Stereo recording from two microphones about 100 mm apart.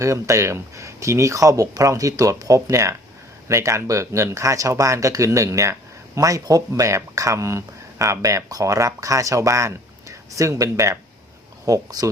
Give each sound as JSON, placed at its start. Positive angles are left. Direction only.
{"t": 0.0, "sound": "speech", "side_deg": -30}